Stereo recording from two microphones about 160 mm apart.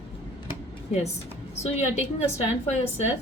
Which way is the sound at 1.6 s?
45° left (ahead or behind).